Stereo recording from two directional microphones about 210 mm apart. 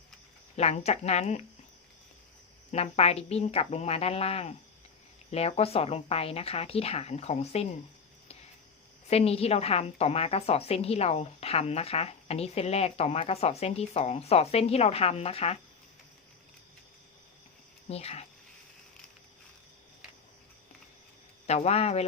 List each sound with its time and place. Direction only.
0.5 s speech: 30° left (ahead or behind)
2.7 s a woman's voice: 30° left (ahead or behind)
9.0 s a woman's voice: 30° left (ahead or behind)
17.8 s a woman's voice: 30° left (ahead or behind)
21.4 s a woman's voice: 30° left (ahead or behind)